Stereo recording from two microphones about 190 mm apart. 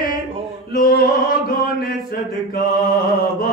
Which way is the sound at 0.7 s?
50° left (ahead or behind).